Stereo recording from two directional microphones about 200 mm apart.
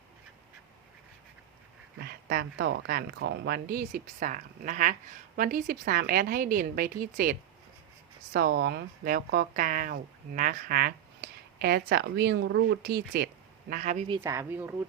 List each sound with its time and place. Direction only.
2.0 s speech: 50° right (ahead or behind)
14.2 s speech: 10° right (ahead or behind)